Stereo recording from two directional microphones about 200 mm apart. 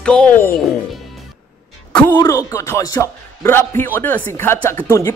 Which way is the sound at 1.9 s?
5° left (ahead or behind).